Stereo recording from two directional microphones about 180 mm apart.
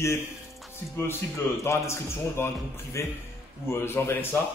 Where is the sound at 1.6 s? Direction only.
15° left (ahead or behind).